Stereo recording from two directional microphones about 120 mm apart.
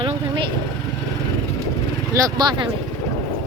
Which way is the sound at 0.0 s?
45° right (ahead or behind).